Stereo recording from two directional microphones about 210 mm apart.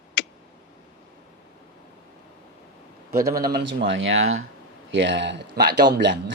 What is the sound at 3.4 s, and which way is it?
Speech, 45° right (ahead or behind).